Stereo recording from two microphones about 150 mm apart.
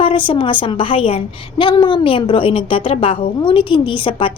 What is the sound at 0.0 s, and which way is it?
Speech, 35° left (ahead or behind).